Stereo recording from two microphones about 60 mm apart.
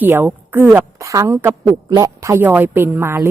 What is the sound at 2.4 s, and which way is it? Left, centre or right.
Speech, right.